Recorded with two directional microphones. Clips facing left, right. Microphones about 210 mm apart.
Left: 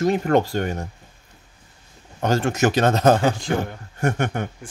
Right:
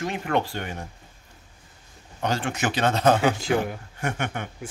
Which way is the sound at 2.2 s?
45° left (ahead or behind).